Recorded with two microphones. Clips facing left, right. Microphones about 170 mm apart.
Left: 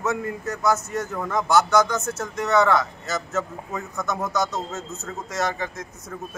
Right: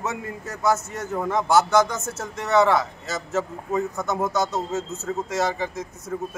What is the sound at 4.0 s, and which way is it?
Speech, 25° right (ahead or behind).